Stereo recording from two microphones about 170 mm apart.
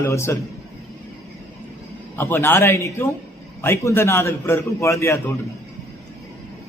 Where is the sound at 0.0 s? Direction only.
15° left (ahead or behind).